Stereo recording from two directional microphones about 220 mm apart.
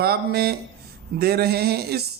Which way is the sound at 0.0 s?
45° right (ahead or behind).